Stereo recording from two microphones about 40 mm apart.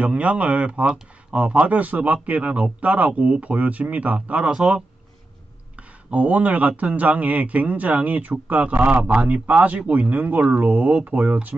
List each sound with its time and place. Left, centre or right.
0.0 s speech: right
4.5 s speech: centre
5.8 s a sound: right
6.8 s speech: right